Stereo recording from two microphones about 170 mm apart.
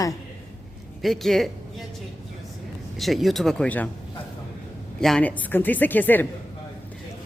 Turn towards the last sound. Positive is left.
turn(degrees=10)  # may be behind; listen again after turning